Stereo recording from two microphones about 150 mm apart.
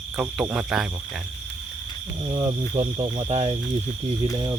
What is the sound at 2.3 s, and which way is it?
Cricket, 30° right (ahead or behind).